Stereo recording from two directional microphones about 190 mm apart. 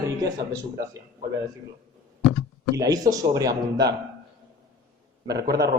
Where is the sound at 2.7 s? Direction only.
20° right (ahead or behind).